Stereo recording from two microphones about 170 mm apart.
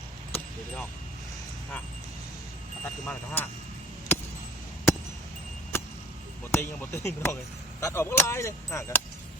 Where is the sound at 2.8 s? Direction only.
5° left (ahead or behind).